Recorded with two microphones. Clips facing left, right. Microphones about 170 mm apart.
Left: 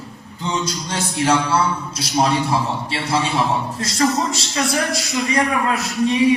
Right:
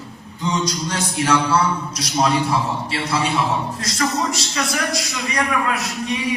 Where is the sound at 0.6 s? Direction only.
30° left (ahead or behind).